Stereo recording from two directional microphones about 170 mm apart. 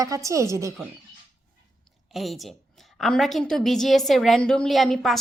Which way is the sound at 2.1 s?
Centre (ahead or behind).